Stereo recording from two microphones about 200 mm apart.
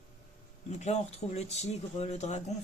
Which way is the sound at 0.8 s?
35° left (ahead or behind).